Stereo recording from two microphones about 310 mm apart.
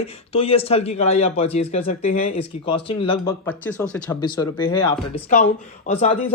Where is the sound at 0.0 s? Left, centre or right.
Centre.